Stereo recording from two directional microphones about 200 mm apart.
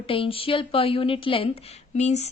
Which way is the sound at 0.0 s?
25° left (ahead or behind).